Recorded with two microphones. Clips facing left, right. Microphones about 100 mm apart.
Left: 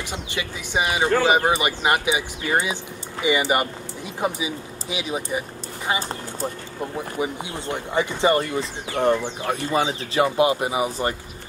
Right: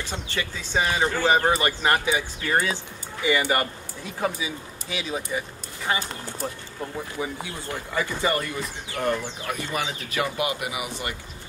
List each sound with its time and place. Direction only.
0.1 s speech: 15° left (ahead or behind)
6.4 s speech: 20° left (ahead or behind)